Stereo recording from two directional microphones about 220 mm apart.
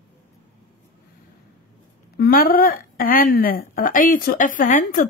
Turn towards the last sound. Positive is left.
turn(degrees=40)  # may be behind; listen again after turning